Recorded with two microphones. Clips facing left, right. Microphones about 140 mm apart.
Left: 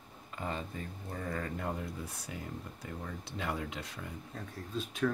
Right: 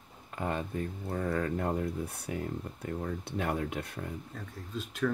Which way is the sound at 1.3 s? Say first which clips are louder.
Right 6 dB; 55° right (ahead or behind).